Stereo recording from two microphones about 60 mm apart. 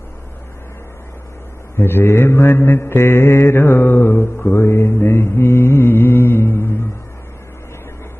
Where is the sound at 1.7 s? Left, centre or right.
Left.